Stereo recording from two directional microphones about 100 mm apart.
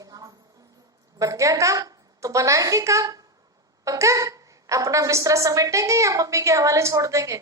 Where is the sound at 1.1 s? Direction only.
35° right (ahead or behind).